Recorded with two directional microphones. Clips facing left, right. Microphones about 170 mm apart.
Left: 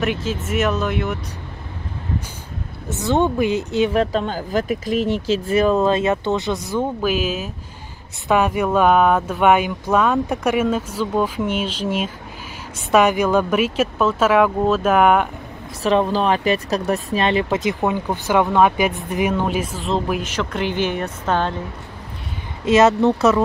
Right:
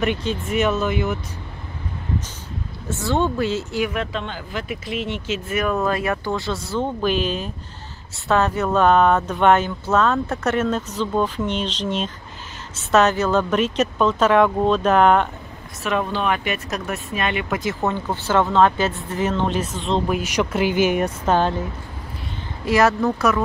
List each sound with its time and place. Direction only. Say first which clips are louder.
0.0 s speech: even; centre (ahead or behind)
2.9 s speech: left 3 dB; 20° left (ahead or behind)
3.9 s speech: left 7 dB; 40° left (ahead or behind); by 15.2 s 10° left (ahead or behind)
15.8 s speech: left 5 dB; 35° left (ahead or behind); by 20.2 s centre (ahead or behind)
20.2 s speech: right 3 dB; 10° right (ahead or behind)
22.7 s speech: left 4 dB; 20° left (ahead or behind)